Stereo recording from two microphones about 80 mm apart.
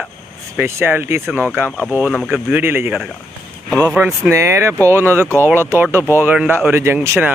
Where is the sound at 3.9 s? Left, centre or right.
Centre.